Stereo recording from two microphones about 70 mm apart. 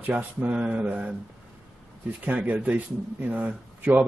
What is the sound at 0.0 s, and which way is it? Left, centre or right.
Speech, right.